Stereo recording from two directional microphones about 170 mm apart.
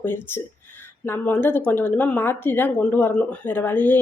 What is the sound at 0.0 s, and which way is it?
A woman's voice, 10° left (ahead or behind).